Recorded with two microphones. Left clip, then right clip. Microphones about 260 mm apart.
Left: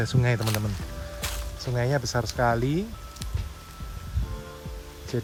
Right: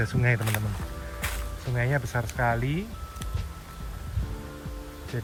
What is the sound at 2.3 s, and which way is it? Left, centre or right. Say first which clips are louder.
Speech: left 3 dB; centre.